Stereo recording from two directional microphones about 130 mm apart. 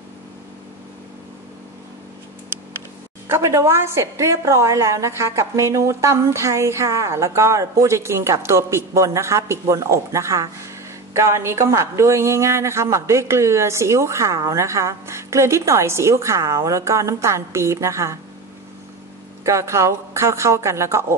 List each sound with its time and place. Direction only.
3.3 s a woman's voice: 20° right (ahead or behind)
19.4 s a woman's voice: 25° right (ahead or behind)